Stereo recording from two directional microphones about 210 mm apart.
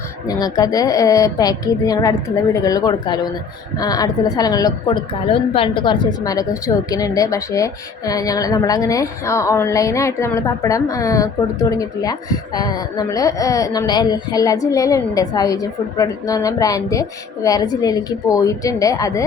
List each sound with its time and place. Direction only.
0.3 s a woman's voice: 20° left (ahead or behind)